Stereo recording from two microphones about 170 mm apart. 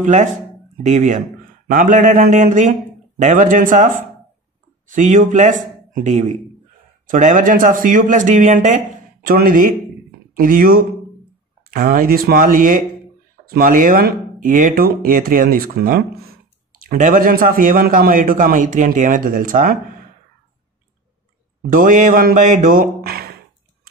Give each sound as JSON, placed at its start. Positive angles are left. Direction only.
{"t": 0.0, "sound": "a man's voice", "side_deg": -45}
{"t": 16.8, "sound": "a man's voice", "side_deg": -50}
{"t": 21.7, "sound": "speech", "side_deg": -50}